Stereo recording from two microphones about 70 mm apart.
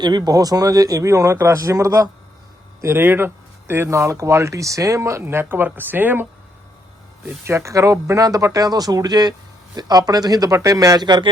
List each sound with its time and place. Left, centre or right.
0.0 s speech: right
2.8 s speech: right
5.2 s speech: right
7.4 s speech: right